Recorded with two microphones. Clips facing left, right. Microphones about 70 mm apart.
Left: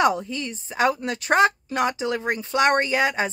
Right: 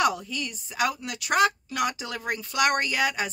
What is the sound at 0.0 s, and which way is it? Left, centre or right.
A woman's voice, left.